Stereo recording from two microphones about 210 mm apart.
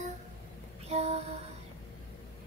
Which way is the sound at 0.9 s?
30° right (ahead or behind).